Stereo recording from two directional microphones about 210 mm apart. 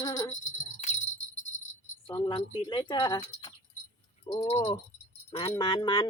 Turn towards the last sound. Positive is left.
turn(degrees=20)  # may be behind; listen again after turning